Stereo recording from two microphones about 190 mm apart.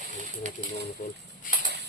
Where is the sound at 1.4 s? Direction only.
45° left (ahead or behind).